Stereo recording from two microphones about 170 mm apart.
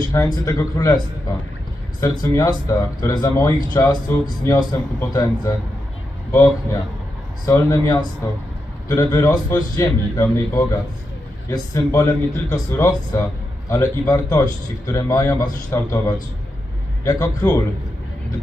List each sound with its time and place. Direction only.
0.1 s a man's voice: 20° left (ahead or behind)